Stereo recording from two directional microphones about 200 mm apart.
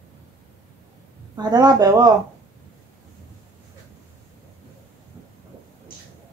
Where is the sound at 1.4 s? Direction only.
20° right (ahead or behind).